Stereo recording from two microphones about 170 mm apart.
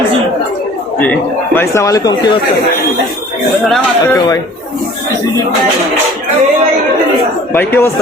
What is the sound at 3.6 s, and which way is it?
Speech, centre (ahead or behind).